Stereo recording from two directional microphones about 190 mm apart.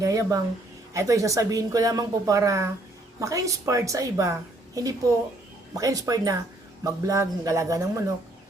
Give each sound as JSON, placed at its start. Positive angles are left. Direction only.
{"t": 0.0, "sound": "a woman's voice", "side_deg": -20}